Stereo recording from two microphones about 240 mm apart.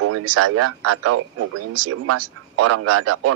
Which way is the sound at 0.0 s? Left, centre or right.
Right.